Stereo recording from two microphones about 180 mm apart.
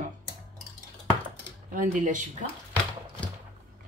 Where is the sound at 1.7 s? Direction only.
45° right (ahead or behind).